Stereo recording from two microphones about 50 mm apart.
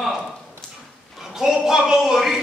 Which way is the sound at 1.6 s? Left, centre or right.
Centre.